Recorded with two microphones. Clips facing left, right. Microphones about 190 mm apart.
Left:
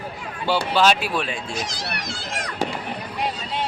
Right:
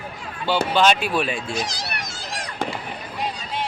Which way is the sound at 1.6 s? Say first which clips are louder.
Left 1 dB; 45° right (ahead or behind).